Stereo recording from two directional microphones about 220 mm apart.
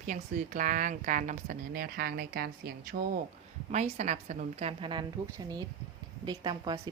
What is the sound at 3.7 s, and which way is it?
Speech, 30° right (ahead or behind).